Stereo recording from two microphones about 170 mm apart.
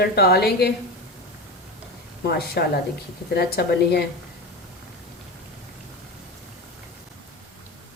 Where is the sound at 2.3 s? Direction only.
65° left (ahead or behind).